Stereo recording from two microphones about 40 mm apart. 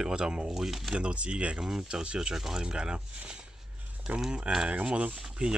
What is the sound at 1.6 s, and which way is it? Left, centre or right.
Speech, centre.